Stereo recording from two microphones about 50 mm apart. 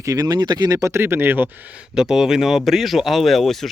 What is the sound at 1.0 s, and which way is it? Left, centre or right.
Speech, right.